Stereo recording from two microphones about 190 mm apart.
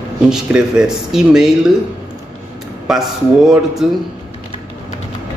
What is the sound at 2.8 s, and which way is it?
Speech, centre (ahead or behind).